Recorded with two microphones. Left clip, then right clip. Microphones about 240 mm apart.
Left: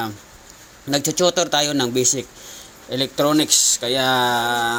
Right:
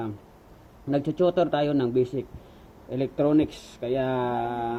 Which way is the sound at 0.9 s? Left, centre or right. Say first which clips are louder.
Left 5 dB; centre.